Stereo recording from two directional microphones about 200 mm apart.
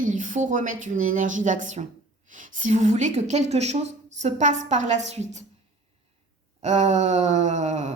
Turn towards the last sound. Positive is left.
turn(degrees=-35)  # may be behind; listen again after turning